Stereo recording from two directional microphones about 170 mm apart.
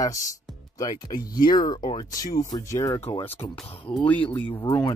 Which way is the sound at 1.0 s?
25° left (ahead or behind).